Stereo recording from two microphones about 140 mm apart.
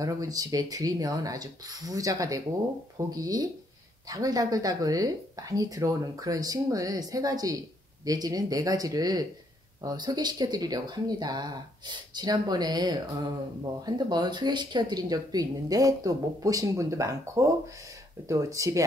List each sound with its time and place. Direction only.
0.0 s speech: 25° right (ahead or behind)